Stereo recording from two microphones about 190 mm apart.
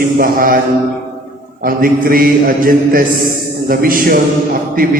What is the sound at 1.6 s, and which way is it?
A man's voice, 50° right (ahead or behind).